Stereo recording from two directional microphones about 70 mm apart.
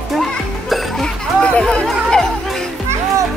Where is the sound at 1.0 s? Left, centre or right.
Centre.